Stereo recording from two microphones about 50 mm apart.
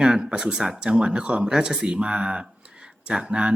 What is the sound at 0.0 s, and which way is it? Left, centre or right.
Speech, centre.